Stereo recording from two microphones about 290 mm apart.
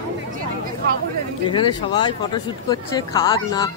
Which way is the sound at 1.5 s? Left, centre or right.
Centre.